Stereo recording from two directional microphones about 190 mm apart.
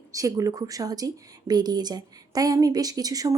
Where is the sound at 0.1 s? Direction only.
15° right (ahead or behind).